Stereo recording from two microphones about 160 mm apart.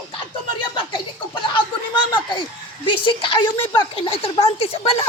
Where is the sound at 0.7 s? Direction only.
30° left (ahead or behind).